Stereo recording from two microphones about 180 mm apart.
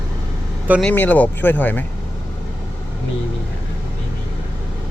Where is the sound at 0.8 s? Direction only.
10° left (ahead or behind).